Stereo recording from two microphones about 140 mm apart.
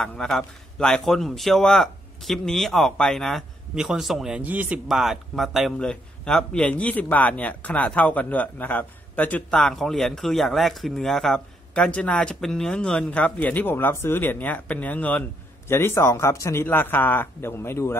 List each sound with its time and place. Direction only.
0.0 s a man's voice: 5° left (ahead or behind)